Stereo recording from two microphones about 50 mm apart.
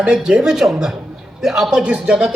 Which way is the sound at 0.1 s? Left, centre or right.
Centre.